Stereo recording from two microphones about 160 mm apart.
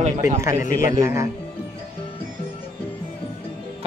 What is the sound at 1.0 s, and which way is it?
Speech, 15° right (ahead or behind).